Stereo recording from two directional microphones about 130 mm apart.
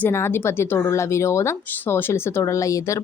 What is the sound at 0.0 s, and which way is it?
Speech, 20° left (ahead or behind).